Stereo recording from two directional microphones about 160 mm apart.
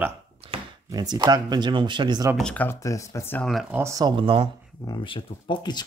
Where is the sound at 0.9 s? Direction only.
25° right (ahead or behind).